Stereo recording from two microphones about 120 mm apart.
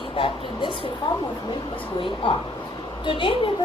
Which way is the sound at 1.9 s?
45° left (ahead or behind).